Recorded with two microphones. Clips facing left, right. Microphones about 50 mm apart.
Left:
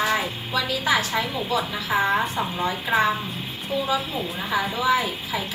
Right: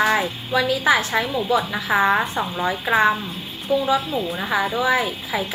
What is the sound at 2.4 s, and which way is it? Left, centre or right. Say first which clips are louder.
Speech: right 2 dB; centre.